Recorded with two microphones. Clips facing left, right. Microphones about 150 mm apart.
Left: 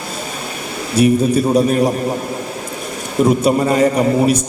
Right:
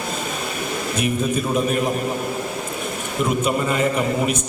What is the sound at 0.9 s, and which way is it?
Speech, 35° left (ahead or behind).